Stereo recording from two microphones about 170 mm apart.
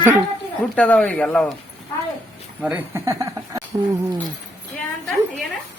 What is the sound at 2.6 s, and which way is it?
Speech, 10° right (ahead or behind).